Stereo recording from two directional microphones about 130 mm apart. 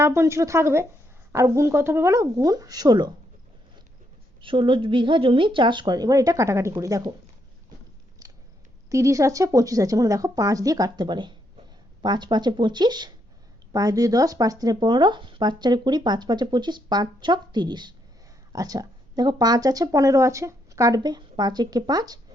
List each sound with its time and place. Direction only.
0.0 s speech: 20° right (ahead or behind)
4.4 s speech: 40° right (ahead or behind)
8.2 s biting: 25° right (ahead or behind)
8.9 s speech: 25° right (ahead or behind)